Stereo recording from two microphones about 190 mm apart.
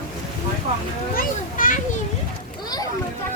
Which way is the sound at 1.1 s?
45° left (ahead or behind).